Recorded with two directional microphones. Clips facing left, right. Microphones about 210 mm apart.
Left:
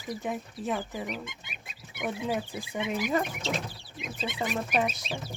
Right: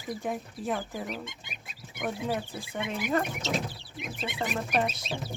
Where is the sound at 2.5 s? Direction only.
5° left (ahead or behind).